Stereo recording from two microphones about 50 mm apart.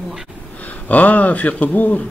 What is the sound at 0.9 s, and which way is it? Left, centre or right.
Speech, left.